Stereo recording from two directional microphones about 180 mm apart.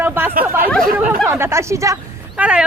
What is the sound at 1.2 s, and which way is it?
Speech, 15° right (ahead or behind).